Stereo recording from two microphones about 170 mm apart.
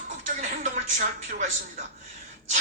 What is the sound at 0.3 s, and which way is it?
Music, 45° right (ahead or behind).